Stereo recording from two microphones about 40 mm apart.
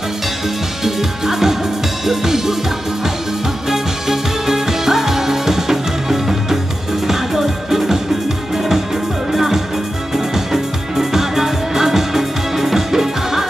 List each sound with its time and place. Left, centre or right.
0.8 s music: centre
3.7 s music: centre
9.3 s music: centre